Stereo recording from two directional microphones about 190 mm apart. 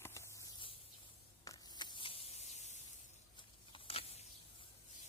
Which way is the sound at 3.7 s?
30° left (ahead or behind).